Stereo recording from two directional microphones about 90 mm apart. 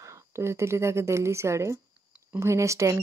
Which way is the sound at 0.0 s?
30° right (ahead or behind).